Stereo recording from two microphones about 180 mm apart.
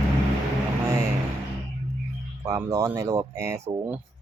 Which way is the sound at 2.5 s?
15° right (ahead or behind).